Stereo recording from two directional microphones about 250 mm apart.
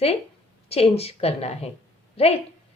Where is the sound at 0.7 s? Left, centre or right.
Left.